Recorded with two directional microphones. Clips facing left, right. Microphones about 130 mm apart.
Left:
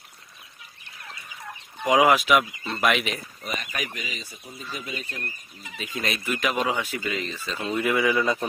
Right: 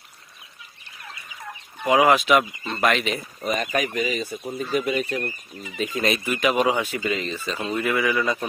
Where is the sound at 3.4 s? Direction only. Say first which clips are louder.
Right 8 dB; 45° right (ahead or behind).